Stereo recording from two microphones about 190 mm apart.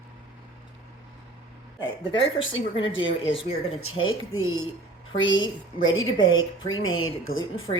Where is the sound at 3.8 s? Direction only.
90° left.